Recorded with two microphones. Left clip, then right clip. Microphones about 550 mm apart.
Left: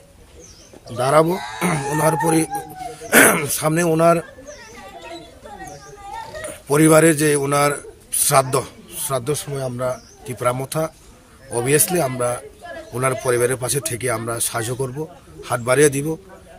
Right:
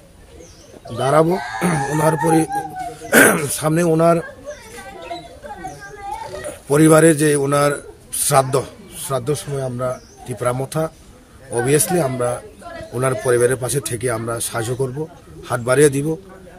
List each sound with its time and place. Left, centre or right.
0.9 s speech: left
6.4 s a man's voice: left